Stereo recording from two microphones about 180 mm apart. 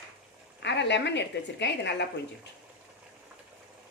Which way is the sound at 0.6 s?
75° left (ahead or behind).